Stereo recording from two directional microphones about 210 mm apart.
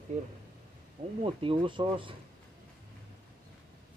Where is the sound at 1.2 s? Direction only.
25° right (ahead or behind).